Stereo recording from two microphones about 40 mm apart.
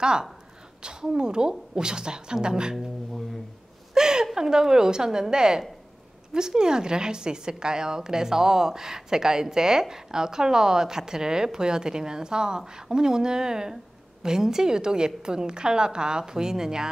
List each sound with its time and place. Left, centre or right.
0.0 s a woman's voice: right
3.9 s a sound: centre
4.4 s a woman's voice: centre